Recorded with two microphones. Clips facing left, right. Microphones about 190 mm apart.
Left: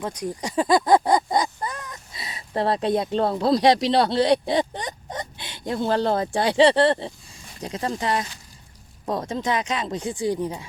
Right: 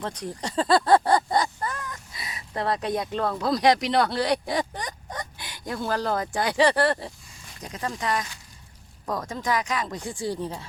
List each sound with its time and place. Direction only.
0.0 s speech: 10° left (ahead or behind)